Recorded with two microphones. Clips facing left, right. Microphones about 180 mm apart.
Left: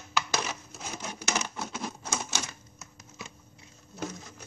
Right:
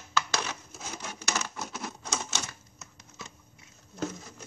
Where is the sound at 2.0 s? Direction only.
10° left (ahead or behind).